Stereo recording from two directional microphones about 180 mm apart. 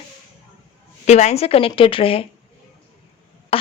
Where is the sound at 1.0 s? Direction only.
40° left (ahead or behind).